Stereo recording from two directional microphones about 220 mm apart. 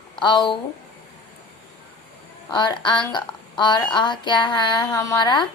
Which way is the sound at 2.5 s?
20° left (ahead or behind).